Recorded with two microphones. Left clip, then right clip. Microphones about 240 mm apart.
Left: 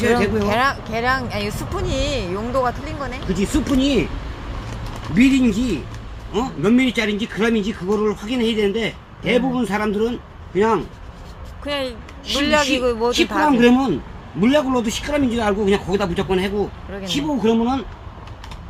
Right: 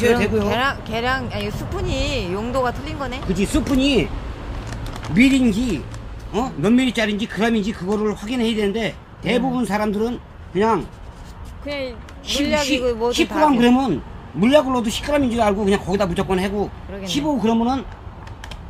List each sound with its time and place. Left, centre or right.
0.3 s speech: centre
5.1 s speech: right
11.6 s speech: centre
13.6 s speech: centre